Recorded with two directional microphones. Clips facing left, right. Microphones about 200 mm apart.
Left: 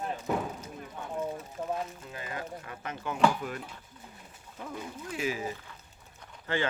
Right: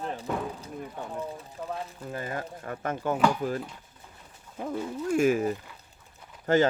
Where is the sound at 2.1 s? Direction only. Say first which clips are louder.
Right 4 dB; 45° right (ahead or behind).